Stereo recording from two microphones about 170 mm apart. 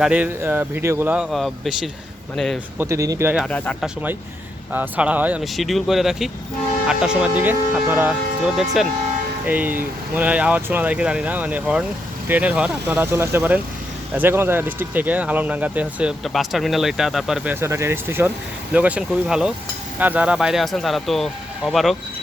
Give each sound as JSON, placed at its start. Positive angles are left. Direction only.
{"t": 0.0, "sound": "speech", "side_deg": -10}
{"t": 2.7, "sound": "speech", "side_deg": -15}
{"t": 3.3, "sound": "speech", "side_deg": 5}
{"t": 4.7, "sound": "speech", "side_deg": -10}
{"t": 9.5, "sound": "speech", "side_deg": -10}